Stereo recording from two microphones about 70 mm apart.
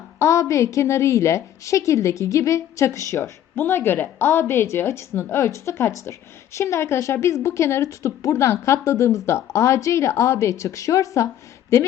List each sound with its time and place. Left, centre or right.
0.2 s a woman's voice: left
3.5 s a woman's voice: left